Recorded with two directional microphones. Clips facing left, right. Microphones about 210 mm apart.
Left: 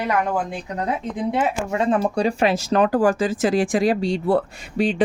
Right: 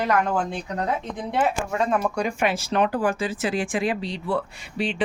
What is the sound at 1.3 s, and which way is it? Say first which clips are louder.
Speech: right 1 dB; 20° left (ahead or behind).